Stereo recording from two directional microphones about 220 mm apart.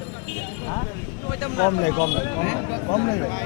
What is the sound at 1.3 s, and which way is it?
Speech, 20° left (ahead or behind).